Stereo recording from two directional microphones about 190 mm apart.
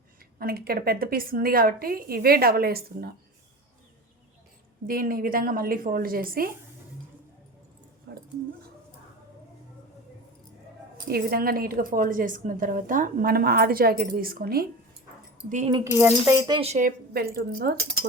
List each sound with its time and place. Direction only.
0.3 s a woman's voice: 55° right (ahead or behind)
4.9 s a woman's voice: 50° right (ahead or behind)
8.1 s dog: 60° right (ahead or behind)
11.1 s a woman's voice: 50° right (ahead or behind)
15.4 s speech: 40° right (ahead or behind)
15.7 s speech: 15° right (ahead or behind); by 17.8 s 55° right (ahead or behind)